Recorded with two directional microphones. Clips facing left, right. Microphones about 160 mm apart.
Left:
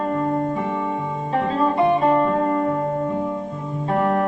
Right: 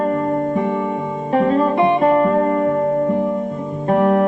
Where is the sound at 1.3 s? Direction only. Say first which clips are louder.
Right 5 dB; 60° right (ahead or behind).